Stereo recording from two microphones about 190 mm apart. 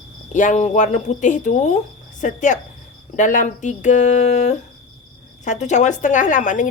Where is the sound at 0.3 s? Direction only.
40° left (ahead or behind).